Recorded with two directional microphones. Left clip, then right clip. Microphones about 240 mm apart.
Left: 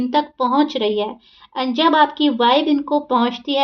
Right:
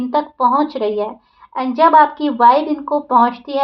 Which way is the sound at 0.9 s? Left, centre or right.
Left.